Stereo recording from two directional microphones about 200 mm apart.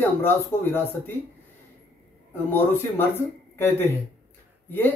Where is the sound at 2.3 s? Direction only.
10° left (ahead or behind).